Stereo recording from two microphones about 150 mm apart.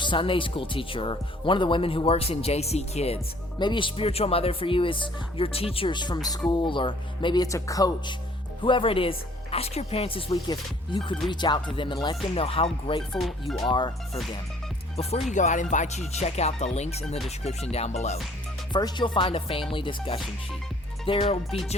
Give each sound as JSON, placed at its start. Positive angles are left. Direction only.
{"t": 0.0, "sound": "speech", "side_deg": 35}
{"t": 3.6, "sound": "speech", "side_deg": 30}
{"t": 10.3, "sound": "speech", "side_deg": 25}
{"t": 13.0, "sound": "speech", "side_deg": 0}
{"t": 13.7, "sound": "speech", "side_deg": 30}
{"t": 14.9, "sound": "music", "side_deg": 50}
{"t": 18.7, "sound": "speech", "side_deg": 30}